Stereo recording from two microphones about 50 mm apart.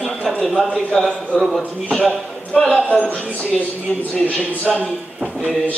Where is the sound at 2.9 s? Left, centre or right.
Left.